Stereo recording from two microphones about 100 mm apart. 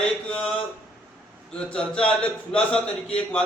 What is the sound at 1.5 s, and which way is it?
A man's voice, 10° left (ahead or behind).